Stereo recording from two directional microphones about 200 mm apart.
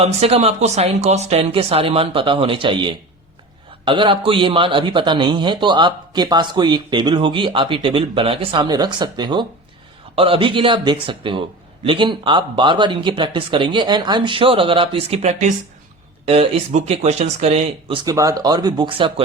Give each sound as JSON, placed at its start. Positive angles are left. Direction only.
{"t": 0.0, "sound": "speech", "side_deg": -30}